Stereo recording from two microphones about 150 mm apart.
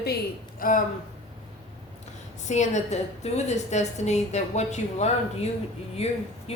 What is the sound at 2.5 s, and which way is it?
A woman's voice, 50° left (ahead or behind).